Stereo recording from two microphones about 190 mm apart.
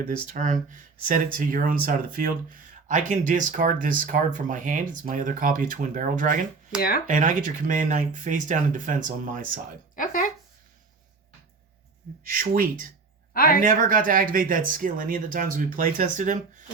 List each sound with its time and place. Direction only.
0.3 s speech: 40° right (ahead or behind)
9.9 s speech: 45° left (ahead or behind)
12.3 s speech: 50° right (ahead or behind)